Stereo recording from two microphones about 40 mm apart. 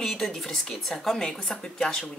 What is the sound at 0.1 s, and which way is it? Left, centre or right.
Speech, centre.